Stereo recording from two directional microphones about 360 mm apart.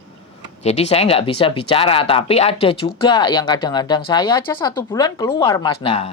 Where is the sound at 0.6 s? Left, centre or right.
Centre.